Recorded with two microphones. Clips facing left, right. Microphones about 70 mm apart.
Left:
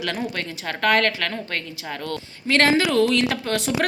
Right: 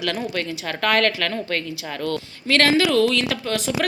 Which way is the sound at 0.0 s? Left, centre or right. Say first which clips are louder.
Right 2 dB; left.